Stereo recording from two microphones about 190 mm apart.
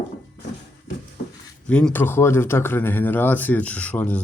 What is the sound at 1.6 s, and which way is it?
Speech, 5° left (ahead or behind).